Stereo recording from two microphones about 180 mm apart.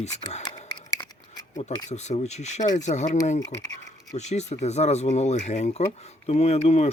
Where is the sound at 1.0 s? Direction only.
20° left (ahead or behind).